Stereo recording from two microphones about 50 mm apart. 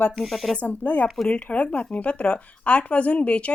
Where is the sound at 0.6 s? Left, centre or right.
Left.